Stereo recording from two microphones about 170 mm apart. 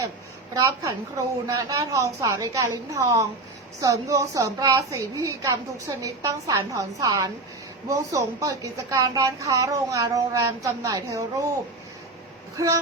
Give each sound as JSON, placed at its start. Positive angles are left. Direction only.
{"t": 0.5, "sound": "a woman's voice", "side_deg": -20}
{"t": 12.5, "sound": "speech", "side_deg": -20}